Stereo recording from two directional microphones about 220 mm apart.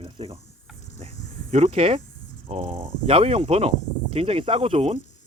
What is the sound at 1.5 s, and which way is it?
Speech, 30° right (ahead or behind).